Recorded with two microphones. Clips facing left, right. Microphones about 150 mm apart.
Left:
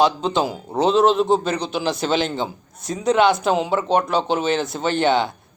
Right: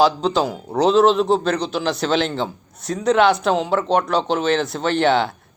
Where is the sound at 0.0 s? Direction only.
Centre (ahead or behind).